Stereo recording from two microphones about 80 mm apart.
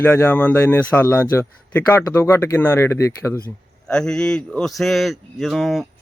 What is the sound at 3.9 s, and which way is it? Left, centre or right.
Speech, centre.